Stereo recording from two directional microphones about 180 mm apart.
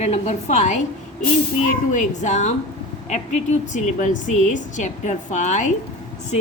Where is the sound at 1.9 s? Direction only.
40° left (ahead or behind).